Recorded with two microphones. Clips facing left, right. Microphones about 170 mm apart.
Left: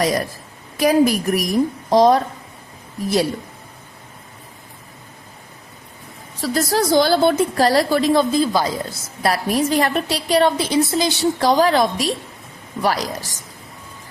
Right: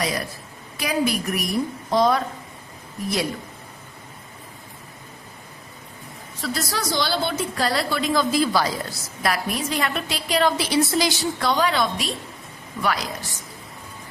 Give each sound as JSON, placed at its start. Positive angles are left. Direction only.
{"t": 0.0, "sound": "a woman's voice", "side_deg": 40}
{"t": 6.4, "sound": "a woman's voice", "side_deg": 45}
{"t": 9.2, "sound": "a woman's voice", "side_deg": 35}
{"t": 10.8, "sound": "a woman's voice", "side_deg": 20}